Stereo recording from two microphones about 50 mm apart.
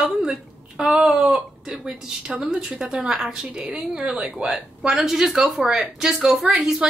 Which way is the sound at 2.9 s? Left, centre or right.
Centre.